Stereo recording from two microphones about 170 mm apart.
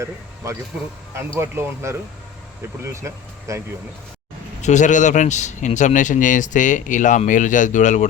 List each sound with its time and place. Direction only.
1.4 s speech: 15° right (ahead or behind)
4.6 s speech: 45° left (ahead or behind)